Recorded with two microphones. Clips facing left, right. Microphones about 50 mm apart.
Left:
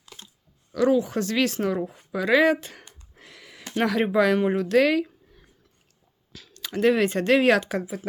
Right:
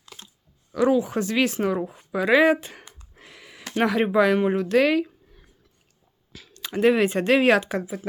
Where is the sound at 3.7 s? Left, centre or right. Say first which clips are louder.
Right 1 dB; centre.